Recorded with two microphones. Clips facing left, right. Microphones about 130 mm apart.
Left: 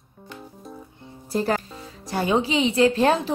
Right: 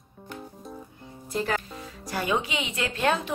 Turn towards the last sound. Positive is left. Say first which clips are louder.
# left 8 dB
turn(degrees=30)  # may be behind; listen again after turning